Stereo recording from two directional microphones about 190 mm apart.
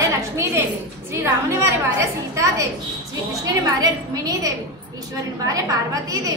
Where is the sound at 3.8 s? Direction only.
20° right (ahead or behind).